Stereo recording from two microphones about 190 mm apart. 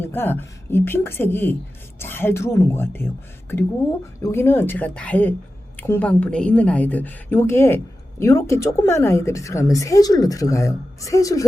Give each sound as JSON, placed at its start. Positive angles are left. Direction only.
{"t": 0.0, "sound": "a woman's voice", "side_deg": 10}
{"t": 4.2, "sound": "a woman's voice", "side_deg": 15}